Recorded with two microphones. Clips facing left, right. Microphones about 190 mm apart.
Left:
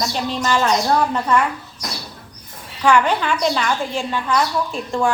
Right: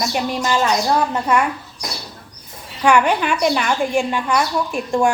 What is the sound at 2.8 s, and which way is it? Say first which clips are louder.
Speech: right 1 dB; 15° right (ahead or behind).